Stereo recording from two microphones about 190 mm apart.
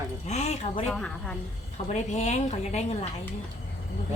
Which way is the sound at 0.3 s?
35° left (ahead or behind).